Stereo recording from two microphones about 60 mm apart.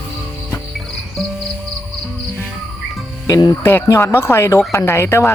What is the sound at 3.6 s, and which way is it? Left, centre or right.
Speech, left.